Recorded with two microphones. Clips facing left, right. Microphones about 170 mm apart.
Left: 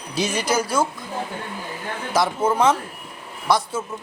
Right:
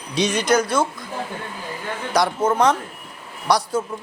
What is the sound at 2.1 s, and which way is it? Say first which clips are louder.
A man's voice: right 1 dB; 5° left (ahead or behind).